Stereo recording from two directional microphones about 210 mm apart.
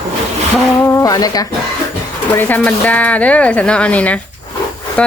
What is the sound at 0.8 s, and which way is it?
Speech, 15° left (ahead or behind).